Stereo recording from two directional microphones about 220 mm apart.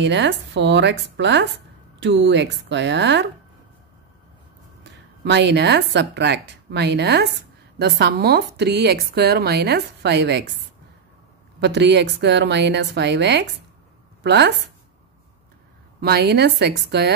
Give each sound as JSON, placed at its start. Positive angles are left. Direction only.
{"t": 0.0, "sound": "a woman's voice", "side_deg": -55}
{"t": 5.2, "sound": "a woman's voice", "side_deg": -50}
{"t": 11.6, "sound": "a woman's voice", "side_deg": -50}
{"t": 16.0, "sound": "a woman's voice", "side_deg": -45}